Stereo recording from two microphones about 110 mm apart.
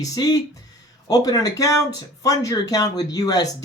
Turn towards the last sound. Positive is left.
turn(degrees=35)  # may be behind; listen again after turning